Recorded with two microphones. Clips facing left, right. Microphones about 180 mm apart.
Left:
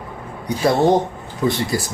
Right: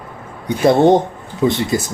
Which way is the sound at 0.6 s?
25° right (ahead or behind).